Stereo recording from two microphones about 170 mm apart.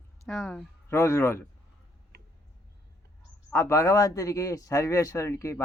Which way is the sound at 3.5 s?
15° left (ahead or behind).